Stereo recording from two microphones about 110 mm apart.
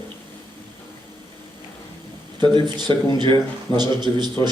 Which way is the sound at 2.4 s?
45° right (ahead or behind).